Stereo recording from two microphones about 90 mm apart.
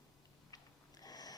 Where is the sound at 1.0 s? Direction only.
45° left (ahead or behind).